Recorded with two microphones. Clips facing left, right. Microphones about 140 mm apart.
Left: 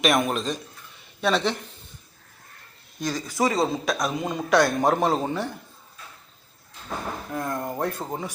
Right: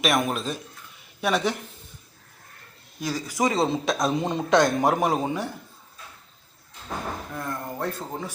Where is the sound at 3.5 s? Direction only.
25° right (ahead or behind).